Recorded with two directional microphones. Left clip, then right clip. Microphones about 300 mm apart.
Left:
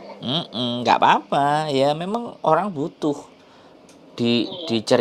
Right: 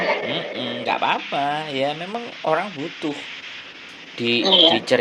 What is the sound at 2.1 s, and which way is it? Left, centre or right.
Speech, left.